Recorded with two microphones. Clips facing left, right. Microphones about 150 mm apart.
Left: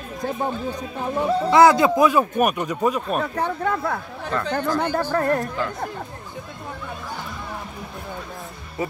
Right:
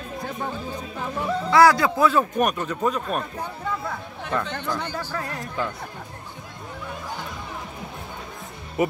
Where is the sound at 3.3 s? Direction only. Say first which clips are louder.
Left 7 dB; 75° left (ahead or behind).